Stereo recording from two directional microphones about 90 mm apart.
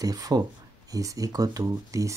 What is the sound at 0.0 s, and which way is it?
Speech, 40° right (ahead or behind).